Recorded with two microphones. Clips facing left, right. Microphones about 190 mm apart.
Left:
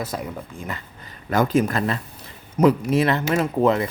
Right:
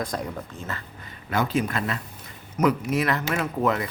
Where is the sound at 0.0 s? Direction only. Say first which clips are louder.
Left 1 dB; 5° left (ahead or behind).